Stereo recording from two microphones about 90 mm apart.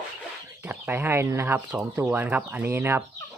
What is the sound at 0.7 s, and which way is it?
Speech, 20° right (ahead or behind).